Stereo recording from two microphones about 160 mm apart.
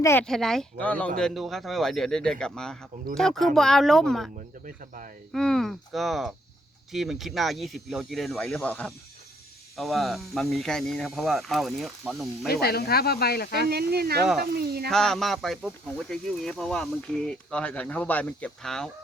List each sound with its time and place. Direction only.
0.0 s speech: 15° left (ahead or behind)
0.3 s speech: centre (ahead or behind)
5.3 s speech: 5° left (ahead or behind)
12.5 s speech: 75° left (ahead or behind)
13.7 s speech: 80° right
14.8 s speech: centre (ahead or behind)